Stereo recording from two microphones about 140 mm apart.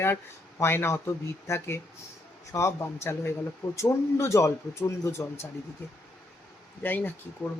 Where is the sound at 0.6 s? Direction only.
15° left (ahead or behind).